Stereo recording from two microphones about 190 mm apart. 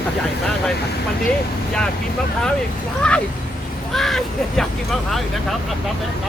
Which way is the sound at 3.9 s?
Centre (ahead or behind).